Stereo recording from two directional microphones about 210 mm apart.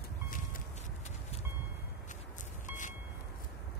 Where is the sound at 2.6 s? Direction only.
35° left (ahead or behind).